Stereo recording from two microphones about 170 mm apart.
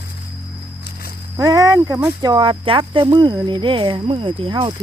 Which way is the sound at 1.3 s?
20° right (ahead or behind).